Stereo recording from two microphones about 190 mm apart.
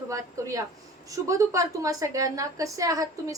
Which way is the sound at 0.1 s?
15° right (ahead or behind).